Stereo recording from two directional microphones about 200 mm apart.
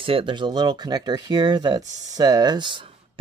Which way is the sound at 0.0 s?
25° right (ahead or behind).